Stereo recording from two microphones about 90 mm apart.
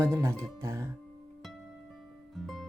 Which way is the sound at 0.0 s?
30° right (ahead or behind).